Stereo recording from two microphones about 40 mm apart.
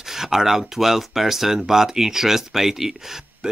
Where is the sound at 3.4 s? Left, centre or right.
Right.